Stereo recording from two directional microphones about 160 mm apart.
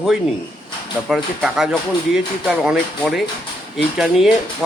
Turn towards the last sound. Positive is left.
turn(degrees=0)  # may be behind; listen again after turning